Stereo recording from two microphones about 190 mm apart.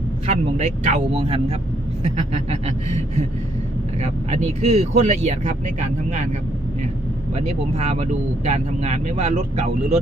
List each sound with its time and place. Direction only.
0.3 s speech: 35° right (ahead or behind)
7.3 s speech: 35° right (ahead or behind)